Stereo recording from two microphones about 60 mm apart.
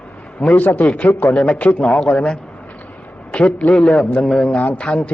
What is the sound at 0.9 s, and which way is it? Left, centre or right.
Speech, left.